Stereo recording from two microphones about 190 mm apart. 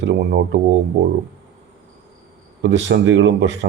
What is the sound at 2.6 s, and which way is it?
Speech, 70° right (ahead or behind).